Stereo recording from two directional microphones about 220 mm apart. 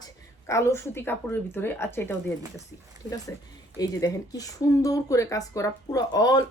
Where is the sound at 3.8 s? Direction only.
15° left (ahead or behind).